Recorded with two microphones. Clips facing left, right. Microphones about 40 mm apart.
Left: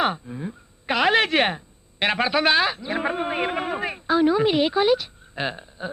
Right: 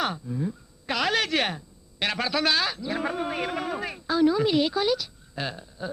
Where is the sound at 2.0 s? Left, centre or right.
Left.